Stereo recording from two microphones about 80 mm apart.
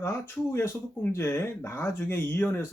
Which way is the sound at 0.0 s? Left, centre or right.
Left.